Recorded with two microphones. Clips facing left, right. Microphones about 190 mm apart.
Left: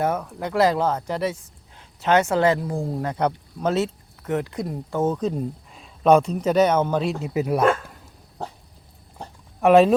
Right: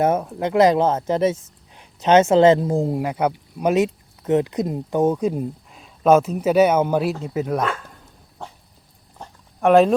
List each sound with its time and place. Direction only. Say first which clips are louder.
0.0 s speech: right 5 dB; 20° right (ahead or behind)
7.2 s speech: even; 10° left (ahead or behind)
9.6 s speech: even; centre (ahead or behind)